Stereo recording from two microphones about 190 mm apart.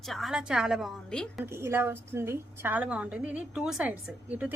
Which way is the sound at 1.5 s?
15° right (ahead or behind).